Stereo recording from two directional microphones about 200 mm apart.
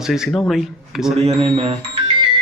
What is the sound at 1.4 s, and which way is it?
Speech, 25° right (ahead or behind).